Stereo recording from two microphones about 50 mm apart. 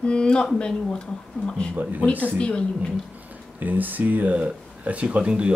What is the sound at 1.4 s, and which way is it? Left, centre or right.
Speech, left.